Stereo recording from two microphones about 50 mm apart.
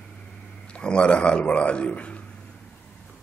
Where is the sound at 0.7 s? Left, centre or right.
Centre.